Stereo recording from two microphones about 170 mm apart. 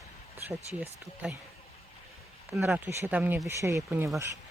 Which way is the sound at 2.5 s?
15° right (ahead or behind).